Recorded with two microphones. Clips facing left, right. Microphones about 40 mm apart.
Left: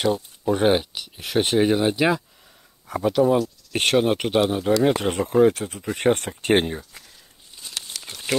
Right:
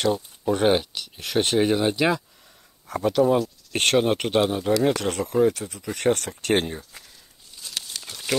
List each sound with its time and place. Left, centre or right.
0.0 s speech: centre
4.9 s speech: left
5.5 s speech: left
5.9 s speech: left
7.7 s crumpling: left
8.1 s wild animals: centre